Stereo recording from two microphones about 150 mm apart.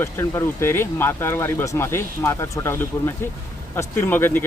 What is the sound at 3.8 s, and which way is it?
Speech, 15° left (ahead or behind).